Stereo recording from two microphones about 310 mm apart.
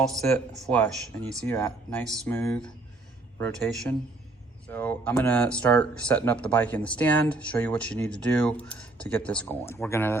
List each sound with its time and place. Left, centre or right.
0.2 s speech: centre